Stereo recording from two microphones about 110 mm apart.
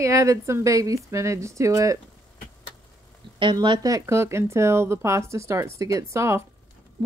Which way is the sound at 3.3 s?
45° right (ahead or behind).